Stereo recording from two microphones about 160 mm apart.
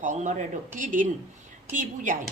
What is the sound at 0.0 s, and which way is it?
Speech, 50° right (ahead or behind).